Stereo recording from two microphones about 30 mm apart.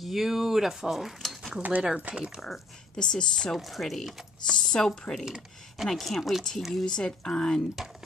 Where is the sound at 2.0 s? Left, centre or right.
Right.